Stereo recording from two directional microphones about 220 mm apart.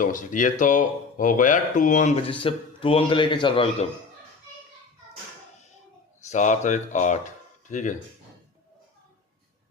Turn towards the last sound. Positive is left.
turn(degrees=35)  # may be behind; listen again after turning